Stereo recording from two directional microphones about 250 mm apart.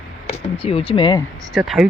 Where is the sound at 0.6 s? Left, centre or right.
Left.